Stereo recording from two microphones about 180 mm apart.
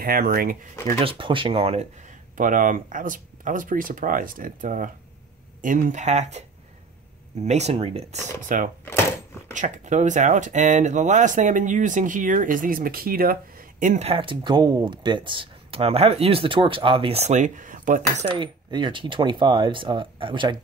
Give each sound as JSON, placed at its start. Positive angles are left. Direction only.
{"t": 0.0, "sound": "speech", "side_deg": -55}
{"t": 1.0, "sound": "speech", "side_deg": -30}
{"t": 7.4, "sound": "speech", "side_deg": -40}
{"t": 18.4, "sound": "speech", "side_deg": -25}